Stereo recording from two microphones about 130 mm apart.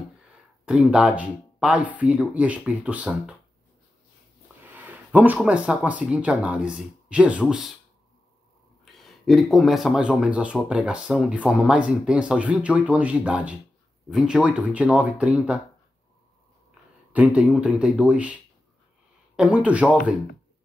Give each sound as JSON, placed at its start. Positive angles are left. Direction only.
{"t": 0.7, "sound": "speech", "side_deg": -10}
{"t": 4.6, "sound": "a sound", "side_deg": -15}
{"t": 5.4, "sound": "speech", "side_deg": -10}
{"t": 8.9, "sound": "speech", "side_deg": 0}
{"t": 17.1, "sound": "speech", "side_deg": -10}